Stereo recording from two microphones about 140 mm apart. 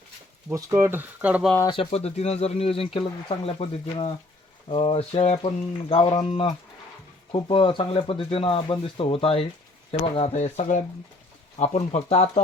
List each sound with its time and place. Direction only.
0.5 s speech: 20° right (ahead or behind)
1.6 s speech: 40° left (ahead or behind)
5.9 s speech: 35° left (ahead or behind)